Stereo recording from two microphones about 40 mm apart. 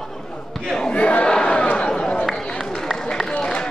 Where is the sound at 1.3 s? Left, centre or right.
Left.